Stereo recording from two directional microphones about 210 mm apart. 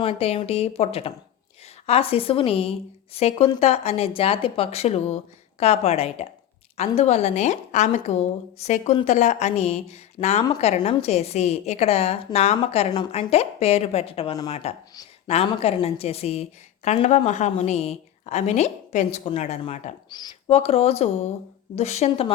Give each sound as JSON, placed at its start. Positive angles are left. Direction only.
{"t": 0.0, "sound": "a woman's voice", "side_deg": 30}
{"t": 20.1, "sound": "a woman's voice", "side_deg": 20}